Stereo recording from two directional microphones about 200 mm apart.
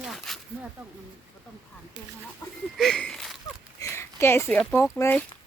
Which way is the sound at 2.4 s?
15° left (ahead or behind).